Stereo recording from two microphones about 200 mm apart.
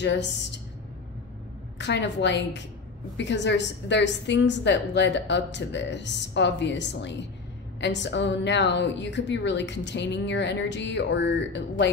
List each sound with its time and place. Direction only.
0.0 s a woman's voice: 60° left (ahead or behind)
1.8 s a woman's voice: 60° left (ahead or behind)